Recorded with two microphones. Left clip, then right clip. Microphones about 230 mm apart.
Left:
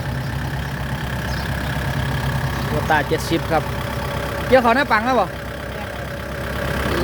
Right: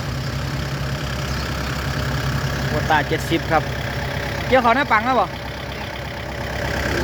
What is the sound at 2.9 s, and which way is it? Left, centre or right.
Speech, centre.